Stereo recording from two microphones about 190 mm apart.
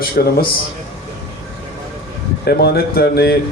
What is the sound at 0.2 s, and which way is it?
Speech, 50° left (ahead or behind).